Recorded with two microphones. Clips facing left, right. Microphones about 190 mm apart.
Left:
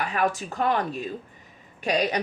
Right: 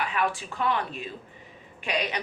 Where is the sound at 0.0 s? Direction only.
40° left (ahead or behind).